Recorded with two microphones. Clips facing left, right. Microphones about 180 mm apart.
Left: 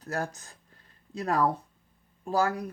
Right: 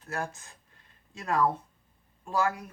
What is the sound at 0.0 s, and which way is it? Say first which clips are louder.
Speech: left 2 dB; 40° left (ahead or behind).